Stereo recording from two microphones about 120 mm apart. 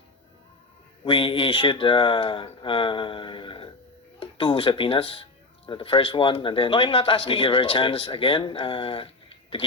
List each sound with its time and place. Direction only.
1.0 s speech: 45° left (ahead or behind)